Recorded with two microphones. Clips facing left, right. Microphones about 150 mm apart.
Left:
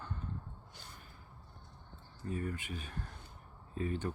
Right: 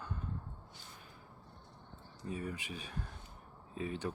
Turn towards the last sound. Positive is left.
turn(degrees=-5)  # may be behind; listen again after turning